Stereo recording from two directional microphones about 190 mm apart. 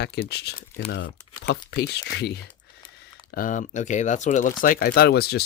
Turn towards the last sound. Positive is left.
turn(degrees=55)  # may be behind; listen again after turning